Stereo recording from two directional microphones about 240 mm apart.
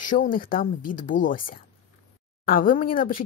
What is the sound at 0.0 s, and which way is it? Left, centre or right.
Speech, left.